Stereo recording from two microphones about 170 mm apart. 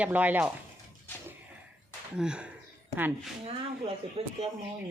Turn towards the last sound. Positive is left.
turn(degrees=-40)  # may be behind; listen again after turning